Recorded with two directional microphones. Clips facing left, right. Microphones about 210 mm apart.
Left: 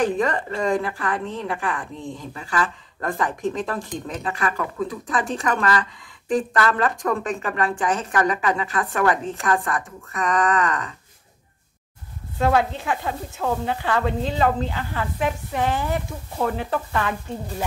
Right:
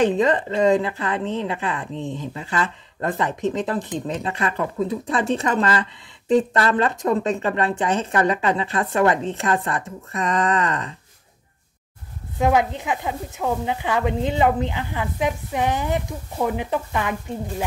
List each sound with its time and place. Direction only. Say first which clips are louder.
0.0 s a woman's voice: right 3 dB; 20° right (ahead or behind)
12.4 s a woman's voice: right 1 dB; 15° right (ahead or behind)